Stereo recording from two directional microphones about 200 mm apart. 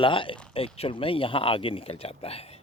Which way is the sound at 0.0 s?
25° left (ahead or behind).